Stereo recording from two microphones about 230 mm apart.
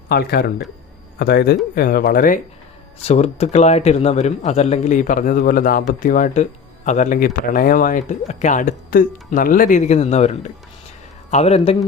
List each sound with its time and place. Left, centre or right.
0.1 s a man's voice: left